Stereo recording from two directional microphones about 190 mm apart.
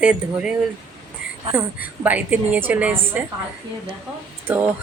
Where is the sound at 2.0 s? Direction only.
10° right (ahead or behind).